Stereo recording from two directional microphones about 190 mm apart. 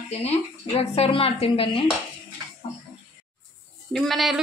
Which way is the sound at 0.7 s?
30° left (ahead or behind).